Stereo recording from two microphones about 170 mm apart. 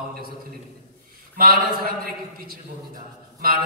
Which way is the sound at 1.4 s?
60° right (ahead or behind).